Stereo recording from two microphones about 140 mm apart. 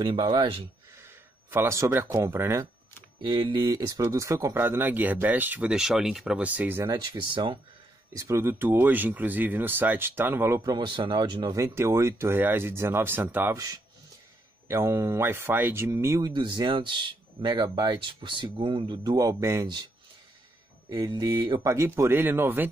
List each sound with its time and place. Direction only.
0.0 s speech: 35° right (ahead or behind)
1.5 s speech: 20° right (ahead or behind)
3.2 s speech: 35° right (ahead or behind); by 6.9 s 15° right (ahead or behind)
6.9 s speech: 35° right (ahead or behind)
8.1 s speech: 20° right (ahead or behind)
10.6 s speech: 30° right (ahead or behind)
11.5 s speech: 20° right (ahead or behind)
14.7 s speech: 20° right (ahead or behind); by 19.1 s 35° right (ahead or behind)
19.1 s speech: 20° right (ahead or behind)
20.9 s speech: 25° right (ahead or behind)
21.5 s speech: 20° right (ahead or behind)